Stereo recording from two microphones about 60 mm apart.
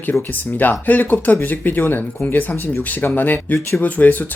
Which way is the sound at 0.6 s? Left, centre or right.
Left.